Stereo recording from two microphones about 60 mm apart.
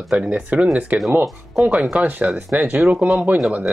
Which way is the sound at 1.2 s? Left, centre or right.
Centre.